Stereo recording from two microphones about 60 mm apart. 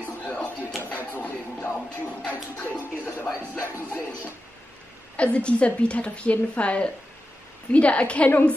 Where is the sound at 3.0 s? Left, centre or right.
Left.